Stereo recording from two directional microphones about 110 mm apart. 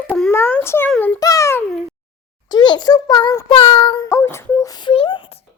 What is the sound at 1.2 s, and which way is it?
Babbling, 30° left (ahead or behind).